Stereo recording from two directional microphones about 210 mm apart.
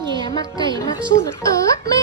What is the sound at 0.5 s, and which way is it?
Speech, 20° right (ahead or behind).